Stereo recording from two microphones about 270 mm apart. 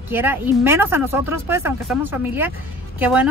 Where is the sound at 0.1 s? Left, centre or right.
Centre.